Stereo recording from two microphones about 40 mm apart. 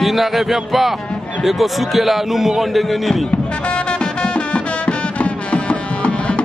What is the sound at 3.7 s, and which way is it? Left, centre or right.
Music, left.